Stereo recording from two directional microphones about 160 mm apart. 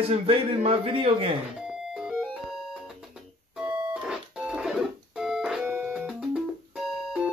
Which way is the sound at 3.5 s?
5° right (ahead or behind).